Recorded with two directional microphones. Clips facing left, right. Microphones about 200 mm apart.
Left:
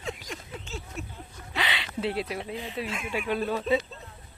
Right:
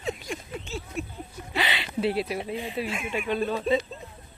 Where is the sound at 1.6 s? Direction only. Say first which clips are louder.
Right 3 dB; 5° right (ahead or behind).